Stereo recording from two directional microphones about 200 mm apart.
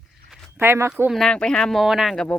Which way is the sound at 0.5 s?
10° right (ahead or behind).